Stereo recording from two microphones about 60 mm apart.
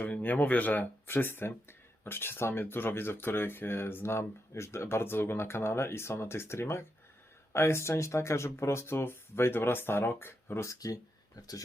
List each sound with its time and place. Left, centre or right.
0.0 s speech: left
10.7 s speech: left
11.3 s speech: left